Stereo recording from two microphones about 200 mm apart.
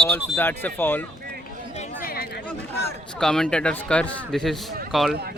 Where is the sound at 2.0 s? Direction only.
45° left (ahead or behind).